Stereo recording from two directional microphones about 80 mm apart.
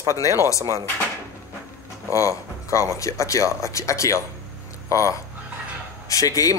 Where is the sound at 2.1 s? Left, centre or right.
Left.